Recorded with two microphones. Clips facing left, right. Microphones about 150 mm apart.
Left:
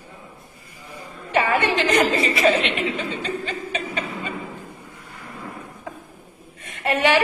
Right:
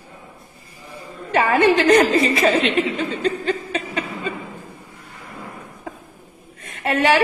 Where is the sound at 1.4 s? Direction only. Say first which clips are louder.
Right 9 dB; 40° right (ahead or behind).